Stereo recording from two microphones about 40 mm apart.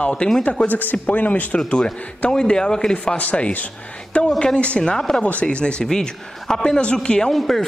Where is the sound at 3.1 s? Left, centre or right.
Left.